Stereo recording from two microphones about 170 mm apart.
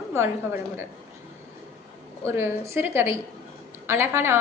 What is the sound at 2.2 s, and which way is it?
A woman's voice, 15° right (ahead or behind).